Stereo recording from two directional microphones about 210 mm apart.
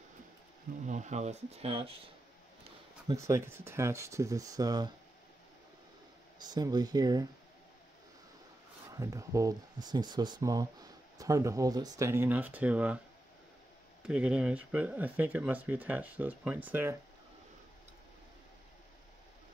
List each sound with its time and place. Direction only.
0.8 s speech: 35° right (ahead or behind)
3.1 s speech: 15° right (ahead or behind)
6.4 s speech: 20° right (ahead or behind)
8.9 s speech: 15° right (ahead or behind)
14.0 s speech: 5° right (ahead or behind)